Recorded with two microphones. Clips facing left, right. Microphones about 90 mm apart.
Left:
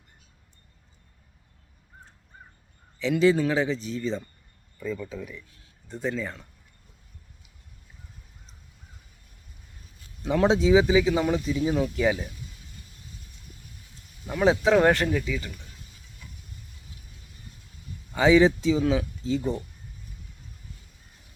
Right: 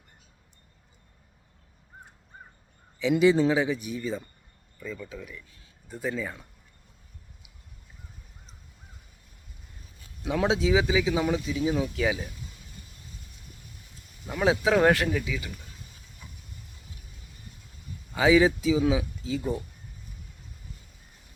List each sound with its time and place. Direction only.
3.0 s speech: 15° right (ahead or behind)
4.8 s speech: centre (ahead or behind)
10.2 s speech: centre (ahead or behind)
14.3 s speech: centre (ahead or behind)
18.1 s speech: 5° right (ahead or behind)